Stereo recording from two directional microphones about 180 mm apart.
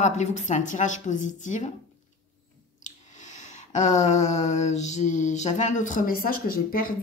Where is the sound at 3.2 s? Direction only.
40° left (ahead or behind).